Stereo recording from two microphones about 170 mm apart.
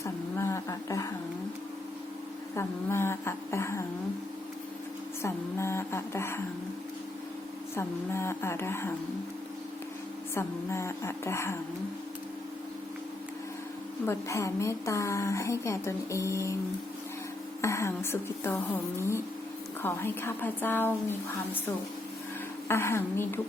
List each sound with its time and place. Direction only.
0.0 s a sound: 15° left (ahead or behind)
2.6 s a woman's voice: 15° left (ahead or behind)
5.2 s a woman's voice: 15° left (ahead or behind)
7.8 s a woman's voice: 15° left (ahead or behind)
10.3 s a woman's voice: 15° left (ahead or behind)
14.1 s a woman's voice: 15° left (ahead or behind)
17.6 s a woman's voice: 15° left (ahead or behind)
22.7 s a woman's voice: 15° left (ahead or behind)